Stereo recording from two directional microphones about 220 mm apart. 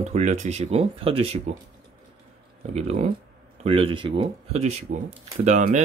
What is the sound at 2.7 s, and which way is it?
Speech, 30° right (ahead or behind).